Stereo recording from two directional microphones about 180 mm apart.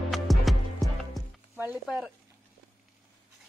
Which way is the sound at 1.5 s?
10° right (ahead or behind).